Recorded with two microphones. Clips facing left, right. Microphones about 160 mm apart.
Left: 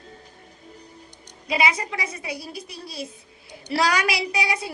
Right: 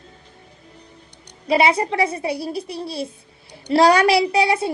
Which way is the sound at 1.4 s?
30° right (ahead or behind).